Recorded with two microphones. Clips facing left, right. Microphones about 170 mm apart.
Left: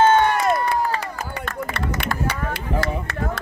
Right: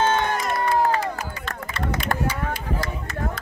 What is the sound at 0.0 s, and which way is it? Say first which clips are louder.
Crowd: left 6 dB; 60° left (ahead or behind).